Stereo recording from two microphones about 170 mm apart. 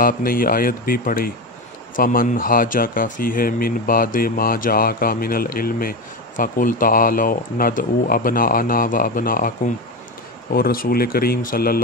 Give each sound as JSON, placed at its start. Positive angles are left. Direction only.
{"t": 0.0, "sound": "speech", "side_deg": 55}
{"t": 10.5, "sound": "speech", "side_deg": 60}